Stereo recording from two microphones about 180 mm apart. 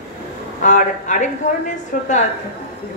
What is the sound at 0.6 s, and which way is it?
A woman's voice, 45° left (ahead or behind).